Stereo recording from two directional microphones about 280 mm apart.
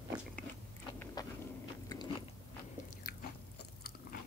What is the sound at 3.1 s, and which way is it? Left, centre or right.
Biting, left.